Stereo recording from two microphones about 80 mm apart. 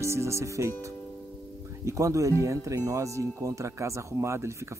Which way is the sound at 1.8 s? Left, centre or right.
Right.